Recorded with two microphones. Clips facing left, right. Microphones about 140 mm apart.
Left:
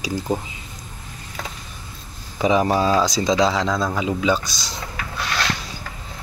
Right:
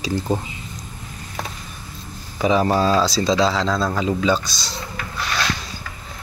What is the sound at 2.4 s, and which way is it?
Speech, 15° left (ahead or behind).